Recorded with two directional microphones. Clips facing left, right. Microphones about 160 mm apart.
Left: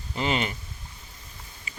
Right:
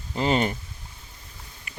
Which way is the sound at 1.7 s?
60° right (ahead or behind).